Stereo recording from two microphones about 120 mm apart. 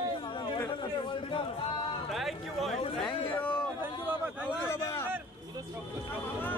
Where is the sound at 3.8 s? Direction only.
10° right (ahead or behind).